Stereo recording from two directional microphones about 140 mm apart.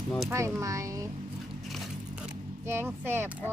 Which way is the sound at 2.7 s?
15° right (ahead or behind).